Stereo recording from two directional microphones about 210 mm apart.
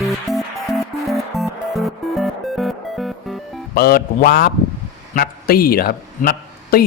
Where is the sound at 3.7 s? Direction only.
45° left (ahead or behind).